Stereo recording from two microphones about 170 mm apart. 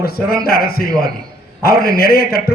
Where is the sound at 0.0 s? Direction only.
65° left (ahead or behind).